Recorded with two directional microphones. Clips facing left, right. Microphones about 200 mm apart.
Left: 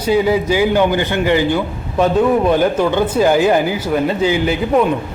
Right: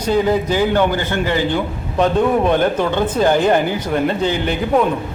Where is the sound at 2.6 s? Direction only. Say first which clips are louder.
Left 2 dB; 10° left (ahead or behind).